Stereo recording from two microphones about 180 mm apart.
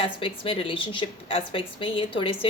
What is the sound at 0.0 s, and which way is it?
A woman's voice, 30° left (ahead or behind).